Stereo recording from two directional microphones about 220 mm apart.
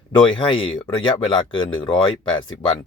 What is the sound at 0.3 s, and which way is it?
Speech, 25° left (ahead or behind).